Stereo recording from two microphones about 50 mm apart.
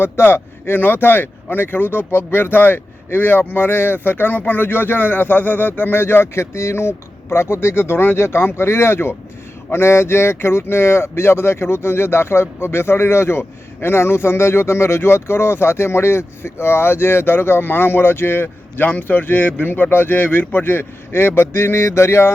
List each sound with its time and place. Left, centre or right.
0.0 s speech: left
18.8 s speech: left